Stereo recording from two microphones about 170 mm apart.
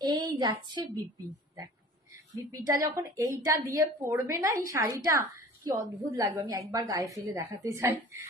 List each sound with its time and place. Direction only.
0.0 s a woman's voice: 25° right (ahead or behind)
2.5 s a woman's voice: 20° right (ahead or behind)